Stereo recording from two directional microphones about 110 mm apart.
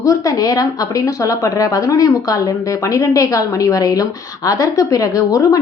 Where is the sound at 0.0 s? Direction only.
35° left (ahead or behind).